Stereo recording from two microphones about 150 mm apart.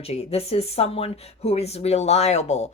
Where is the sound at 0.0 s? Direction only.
40° left (ahead or behind).